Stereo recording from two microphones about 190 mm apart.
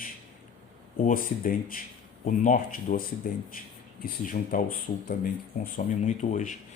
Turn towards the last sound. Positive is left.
turn(degrees=40)  # may be behind; listen again after turning